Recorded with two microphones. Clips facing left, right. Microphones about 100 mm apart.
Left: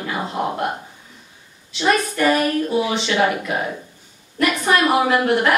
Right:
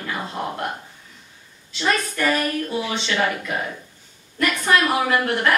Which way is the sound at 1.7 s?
15° left (ahead or behind).